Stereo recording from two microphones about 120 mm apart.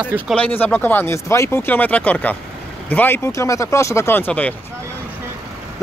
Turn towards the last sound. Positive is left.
turn(degrees=15)  # may be behind; listen again after turning